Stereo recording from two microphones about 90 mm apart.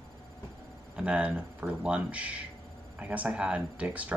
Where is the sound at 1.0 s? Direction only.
10° right (ahead or behind).